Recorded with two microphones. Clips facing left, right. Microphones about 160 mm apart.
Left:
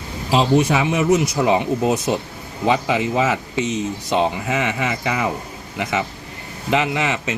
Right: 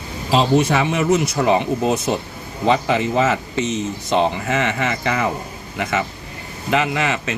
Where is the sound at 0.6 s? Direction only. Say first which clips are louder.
Even; 10° left (ahead or behind).